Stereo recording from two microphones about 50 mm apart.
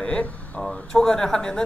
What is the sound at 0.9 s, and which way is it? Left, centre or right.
Speech, centre.